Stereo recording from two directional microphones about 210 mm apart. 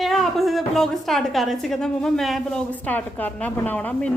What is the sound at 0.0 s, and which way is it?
A woman's voice, centre (ahead or behind).